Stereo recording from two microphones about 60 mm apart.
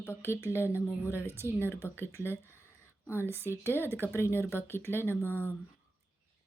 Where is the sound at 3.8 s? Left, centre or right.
Right.